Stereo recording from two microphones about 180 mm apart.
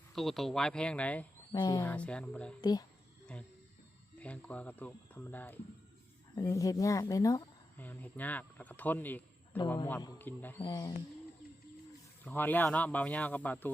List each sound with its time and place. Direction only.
0.1 s speech: centre (ahead or behind)
1.5 s speech: 25° left (ahead or behind)
1.8 s speech: 10° left (ahead or behind)
2.6 s speech: 20° left (ahead or behind)
4.2 s speech: 5° left (ahead or behind)
10.6 s speech: 20° left (ahead or behind)
12.2 s speech: 10° left (ahead or behind)